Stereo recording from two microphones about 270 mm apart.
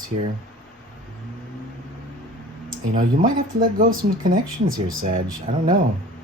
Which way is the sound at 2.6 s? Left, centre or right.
Right.